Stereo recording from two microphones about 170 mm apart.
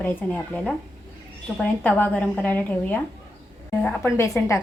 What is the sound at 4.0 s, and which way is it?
Speech, 15° left (ahead or behind).